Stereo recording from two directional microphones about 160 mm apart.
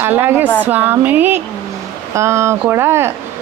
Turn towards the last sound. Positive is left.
turn(degrees=-15)  # may be behind; listen again after turning